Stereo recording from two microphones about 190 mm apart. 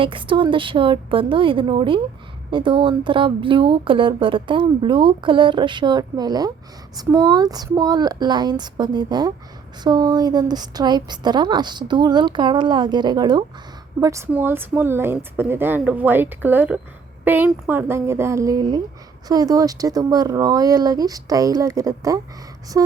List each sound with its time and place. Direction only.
0.0 s a woman's voice: 25° right (ahead or behind)